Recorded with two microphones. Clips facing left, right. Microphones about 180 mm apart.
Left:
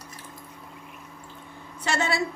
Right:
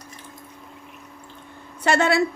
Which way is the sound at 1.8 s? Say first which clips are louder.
Right 7 dB; 60° right (ahead or behind).